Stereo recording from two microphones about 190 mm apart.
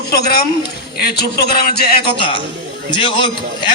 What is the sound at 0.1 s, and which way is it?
A man's voice, 55° left (ahead or behind).